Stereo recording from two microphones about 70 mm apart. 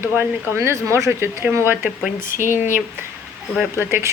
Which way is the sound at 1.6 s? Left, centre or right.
Right.